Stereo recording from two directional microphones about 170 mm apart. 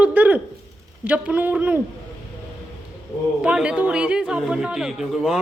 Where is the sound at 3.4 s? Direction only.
5° right (ahead or behind).